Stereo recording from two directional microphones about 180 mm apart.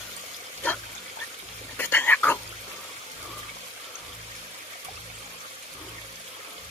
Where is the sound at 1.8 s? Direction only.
10° left (ahead or behind).